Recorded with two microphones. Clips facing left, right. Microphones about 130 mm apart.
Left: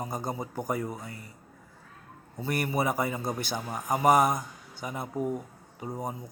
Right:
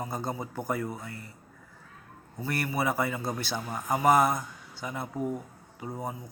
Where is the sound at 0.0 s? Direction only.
20° left (ahead or behind).